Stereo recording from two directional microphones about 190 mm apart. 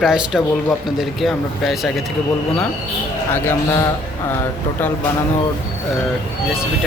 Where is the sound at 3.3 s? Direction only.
15° left (ahead or behind).